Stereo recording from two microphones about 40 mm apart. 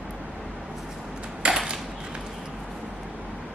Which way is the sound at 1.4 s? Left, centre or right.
Right.